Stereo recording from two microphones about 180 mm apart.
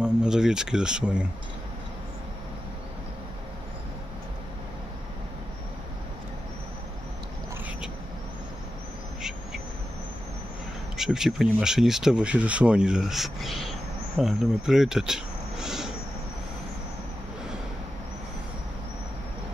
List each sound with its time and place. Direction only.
0.0 s speech: 5° right (ahead or behind)
11.0 s speech: 5° right (ahead or behind)